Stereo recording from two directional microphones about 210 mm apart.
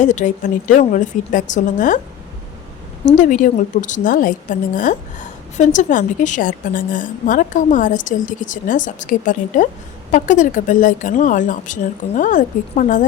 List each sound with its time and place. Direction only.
0.0 s a woman's voice: 35° left (ahead or behind)
3.1 s a woman's voice: 35° left (ahead or behind)